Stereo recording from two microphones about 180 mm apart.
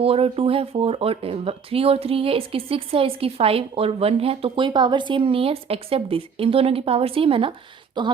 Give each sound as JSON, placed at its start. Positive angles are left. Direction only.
{"t": 0.0, "sound": "speech", "side_deg": -30}